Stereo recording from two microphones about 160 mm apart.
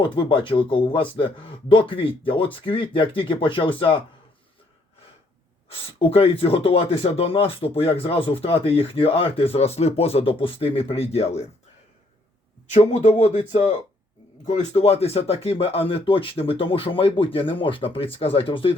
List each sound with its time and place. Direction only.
0.0 s speech: 30° left (ahead or behind)
5.6 s speech: 35° left (ahead or behind)
12.7 s a man's voice: 45° left (ahead or behind)